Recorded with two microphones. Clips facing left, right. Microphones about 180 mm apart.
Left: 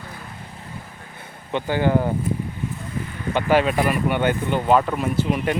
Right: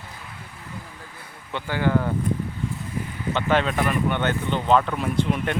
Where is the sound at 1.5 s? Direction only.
20° left (ahead or behind).